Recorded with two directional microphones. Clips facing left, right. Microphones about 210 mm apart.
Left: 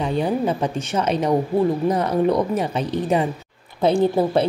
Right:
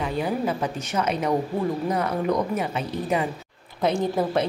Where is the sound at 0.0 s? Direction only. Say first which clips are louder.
Left 4 dB; 30° left (ahead or behind).